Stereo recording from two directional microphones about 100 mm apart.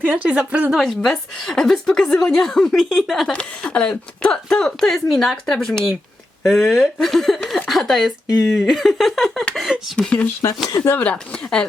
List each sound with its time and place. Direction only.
0.0 s speech: 15° right (ahead or behind)
0.7 s a woman's voice: centre (ahead or behind)
10.8 s speech: 15° left (ahead or behind)